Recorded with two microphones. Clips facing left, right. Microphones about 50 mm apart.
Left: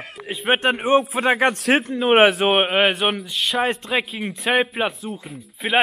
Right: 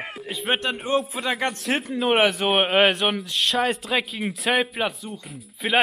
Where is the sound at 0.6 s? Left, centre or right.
Left.